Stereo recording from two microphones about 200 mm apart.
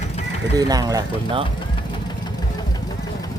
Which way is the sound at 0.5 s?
20° right (ahead or behind).